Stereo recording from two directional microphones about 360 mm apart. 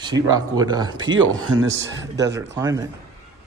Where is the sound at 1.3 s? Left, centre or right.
Right.